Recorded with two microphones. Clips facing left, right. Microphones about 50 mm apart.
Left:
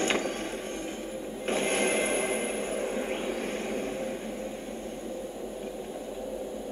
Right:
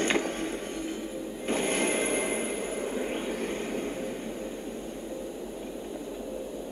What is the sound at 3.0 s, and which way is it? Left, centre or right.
Vehicle, centre.